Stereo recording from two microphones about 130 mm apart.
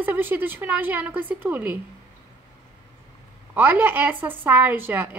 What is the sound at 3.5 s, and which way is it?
Speech, 15° right (ahead or behind).